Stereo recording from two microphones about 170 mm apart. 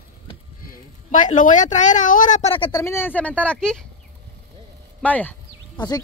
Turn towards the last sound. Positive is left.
turn(degrees=25)  # may be behind; listen again after turning